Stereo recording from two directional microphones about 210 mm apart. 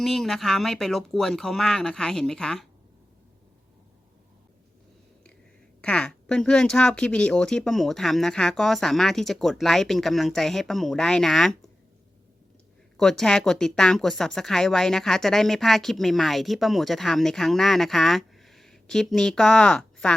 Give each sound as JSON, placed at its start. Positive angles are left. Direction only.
{"t": 0.0, "sound": "a woman's voice", "side_deg": 0}
{"t": 5.8, "sound": "a woman's voice", "side_deg": 5}
{"t": 13.0, "sound": "a woman's voice", "side_deg": 0}